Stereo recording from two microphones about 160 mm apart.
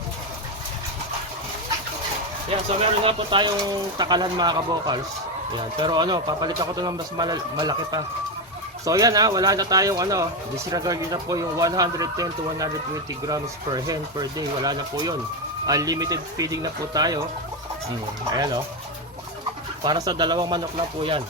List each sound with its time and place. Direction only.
3.0 s speech: 35° right (ahead or behind)
18.3 s speech: 25° right (ahead or behind)
19.8 s speech: 25° right (ahead or behind)